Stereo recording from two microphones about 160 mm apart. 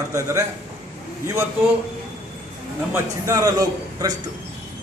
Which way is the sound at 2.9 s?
20° right (ahead or behind).